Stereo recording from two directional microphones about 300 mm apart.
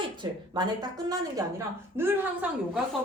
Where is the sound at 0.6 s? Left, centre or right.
Centre.